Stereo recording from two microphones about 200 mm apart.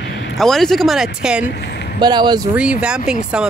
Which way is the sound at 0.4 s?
Centre (ahead or behind).